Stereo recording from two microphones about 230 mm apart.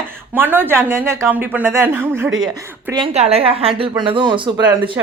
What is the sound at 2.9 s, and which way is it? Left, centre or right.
A woman's voice, right.